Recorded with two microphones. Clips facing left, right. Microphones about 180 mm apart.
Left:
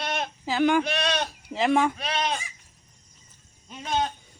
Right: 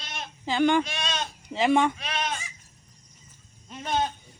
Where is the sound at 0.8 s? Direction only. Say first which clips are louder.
Left 6 dB; 65° left (ahead or behind).